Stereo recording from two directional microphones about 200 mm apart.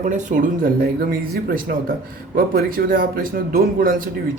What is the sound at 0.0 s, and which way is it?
Speech, 35° right (ahead or behind).